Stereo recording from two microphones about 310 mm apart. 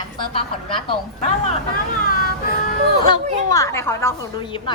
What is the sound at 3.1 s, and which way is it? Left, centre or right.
Speech, centre.